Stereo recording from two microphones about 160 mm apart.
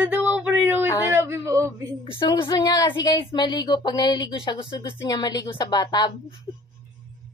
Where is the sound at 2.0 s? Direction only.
30° left (ahead or behind).